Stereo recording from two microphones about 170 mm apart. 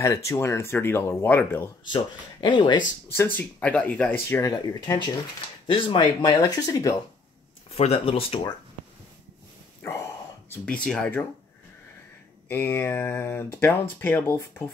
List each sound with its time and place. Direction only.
0.0 s speech: 15° left (ahead or behind)
2.4 s speech: 25° left (ahead or behind)
3.1 s speech: 10° left (ahead or behind)
7.7 s speech: 35° left (ahead or behind)
9.8 s speech: 15° left (ahead or behind)
12.4 s speech: 15° left (ahead or behind)